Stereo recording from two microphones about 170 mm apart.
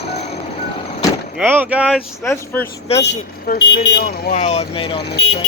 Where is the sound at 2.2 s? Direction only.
15° left (ahead or behind).